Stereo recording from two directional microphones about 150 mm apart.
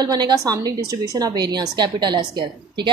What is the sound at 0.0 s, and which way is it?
A woman's voice, 25° right (ahead or behind).